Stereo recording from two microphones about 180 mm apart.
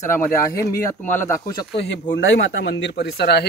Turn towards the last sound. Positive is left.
turn(degrees=65)  # may be behind; listen again after turning